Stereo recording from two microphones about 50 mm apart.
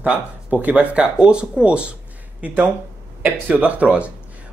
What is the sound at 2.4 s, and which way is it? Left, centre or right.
Speech, right.